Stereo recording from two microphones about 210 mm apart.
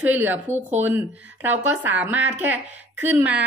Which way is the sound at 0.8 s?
10° right (ahead or behind).